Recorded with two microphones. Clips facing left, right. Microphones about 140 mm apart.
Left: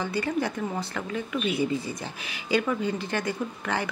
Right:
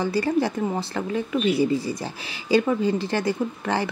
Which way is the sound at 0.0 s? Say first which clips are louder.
Right 5 dB; 35° right (ahead or behind).